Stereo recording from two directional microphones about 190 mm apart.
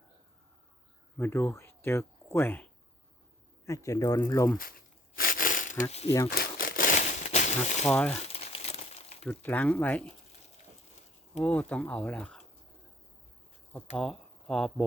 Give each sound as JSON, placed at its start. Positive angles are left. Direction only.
{"t": 1.2, "sound": "speech", "side_deg": 15}
{"t": 3.7, "sound": "speech", "side_deg": 15}
{"t": 5.1, "sound": "a sound", "side_deg": 50}
{"t": 5.9, "sound": "speech", "side_deg": 35}
{"t": 6.3, "sound": "crumpling", "side_deg": 50}
{"t": 7.9, "sound": "speech", "side_deg": 5}
{"t": 8.3, "sound": "crumpling", "side_deg": 35}
{"t": 9.2, "sound": "speech", "side_deg": 10}
{"t": 11.4, "sound": "speech", "side_deg": 5}
{"t": 13.9, "sound": "speech", "side_deg": 0}